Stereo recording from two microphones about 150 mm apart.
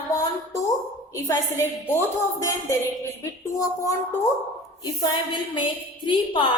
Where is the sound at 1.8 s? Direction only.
20° left (ahead or behind).